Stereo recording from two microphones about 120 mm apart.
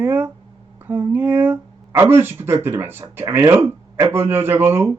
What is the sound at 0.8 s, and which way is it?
Speech, 15° right (ahead or behind).